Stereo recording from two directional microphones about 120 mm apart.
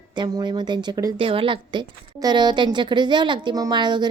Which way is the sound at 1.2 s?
50° right (ahead or behind).